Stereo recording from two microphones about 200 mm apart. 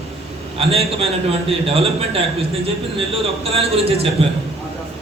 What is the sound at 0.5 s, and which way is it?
Speech, 30° right (ahead or behind).